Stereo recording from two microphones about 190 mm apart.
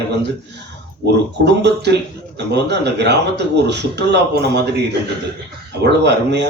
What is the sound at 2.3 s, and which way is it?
A man's voice, 65° right (ahead or behind).